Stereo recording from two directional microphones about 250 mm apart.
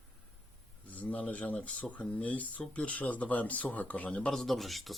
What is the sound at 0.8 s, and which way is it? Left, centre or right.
Speech, centre.